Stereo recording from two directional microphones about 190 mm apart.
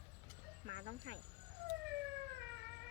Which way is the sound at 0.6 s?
65° right (ahead or behind).